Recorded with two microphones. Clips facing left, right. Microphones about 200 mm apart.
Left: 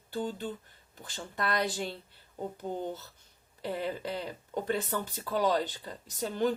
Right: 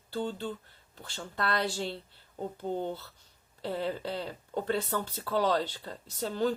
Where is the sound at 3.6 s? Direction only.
15° left (ahead or behind).